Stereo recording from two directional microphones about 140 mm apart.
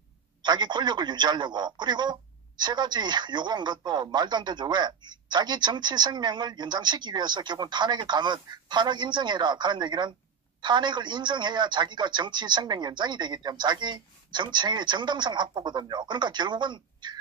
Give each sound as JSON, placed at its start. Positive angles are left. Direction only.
{"t": 0.4, "sound": "speech", "side_deg": -30}